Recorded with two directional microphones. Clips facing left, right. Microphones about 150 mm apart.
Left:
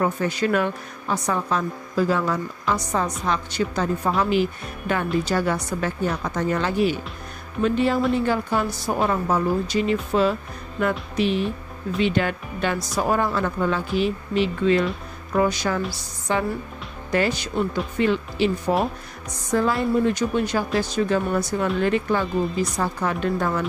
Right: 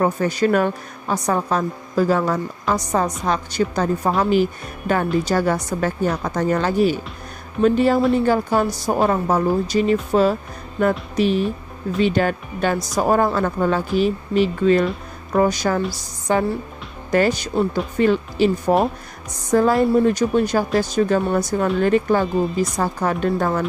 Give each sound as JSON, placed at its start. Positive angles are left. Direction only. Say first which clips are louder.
{"t": 0.0, "sound": "a woman's voice", "louder": "right 4 dB", "side_deg": -40}